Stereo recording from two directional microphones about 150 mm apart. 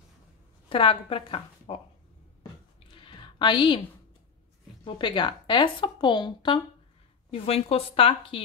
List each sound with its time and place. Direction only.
0.7 s a woman's voice: 35° left (ahead or behind)
3.0 s a sound: 35° left (ahead or behind)
4.8 s a woman's voice: 30° left (ahead or behind)